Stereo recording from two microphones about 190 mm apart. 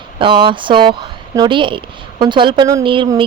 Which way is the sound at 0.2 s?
25° right (ahead or behind).